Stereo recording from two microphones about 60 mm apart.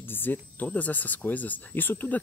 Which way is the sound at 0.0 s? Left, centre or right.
Left.